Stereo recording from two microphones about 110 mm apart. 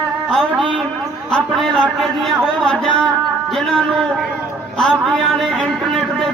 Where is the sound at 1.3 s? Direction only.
10° left (ahead or behind).